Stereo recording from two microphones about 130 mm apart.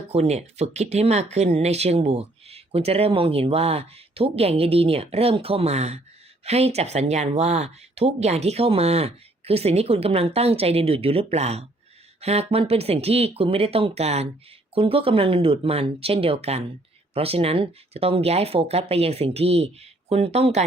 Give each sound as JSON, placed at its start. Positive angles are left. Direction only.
{"t": 0.1, "sound": "speech", "side_deg": -55}